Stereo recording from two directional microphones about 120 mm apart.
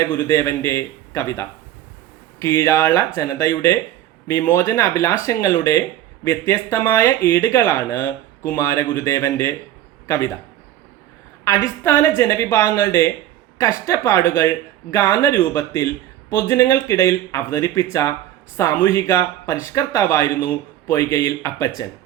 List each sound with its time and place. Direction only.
0.0 s speech: 20° left (ahead or behind)
11.4 s speech: 25° left (ahead or behind)